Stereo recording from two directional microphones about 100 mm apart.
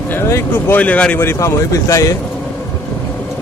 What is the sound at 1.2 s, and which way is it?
Speech, 25° left (ahead or behind).